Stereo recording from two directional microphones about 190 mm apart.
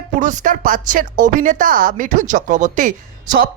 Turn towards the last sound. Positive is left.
turn(degrees=-50)  # may be behind; listen again after turning